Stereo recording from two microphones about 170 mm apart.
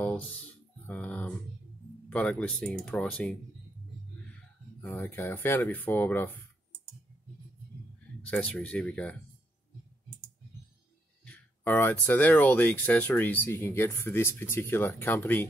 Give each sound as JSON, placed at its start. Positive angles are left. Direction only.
{"t": 0.0, "sound": "a sound", "side_deg": 10}
{"t": 2.0, "sound": "speech", "side_deg": 5}
{"t": 4.8, "sound": "speech", "side_deg": 15}
{"t": 8.3, "sound": "speech", "side_deg": 10}
{"t": 11.2, "sound": "speech", "side_deg": 10}